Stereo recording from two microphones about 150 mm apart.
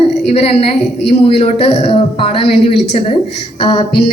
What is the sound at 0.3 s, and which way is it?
A woman's voice, 45° left (ahead or behind).